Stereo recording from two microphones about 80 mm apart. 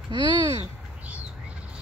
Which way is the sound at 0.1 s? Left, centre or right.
Right.